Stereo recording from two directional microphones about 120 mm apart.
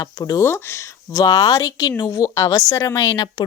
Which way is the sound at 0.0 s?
30° left (ahead or behind).